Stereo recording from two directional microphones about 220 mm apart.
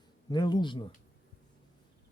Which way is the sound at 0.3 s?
20° left (ahead or behind).